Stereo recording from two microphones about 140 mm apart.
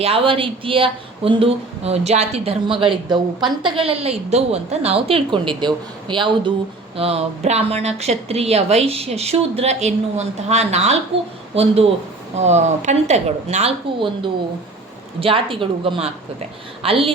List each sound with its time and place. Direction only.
0.0 s speech: 40° right (ahead or behind)
6.9 s speech: 45° right (ahead or behind)